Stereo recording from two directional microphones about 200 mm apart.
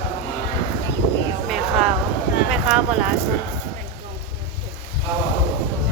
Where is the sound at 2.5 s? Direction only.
5° right (ahead or behind).